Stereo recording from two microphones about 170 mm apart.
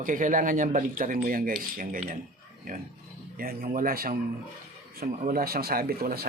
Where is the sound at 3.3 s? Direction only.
60° right (ahead or behind).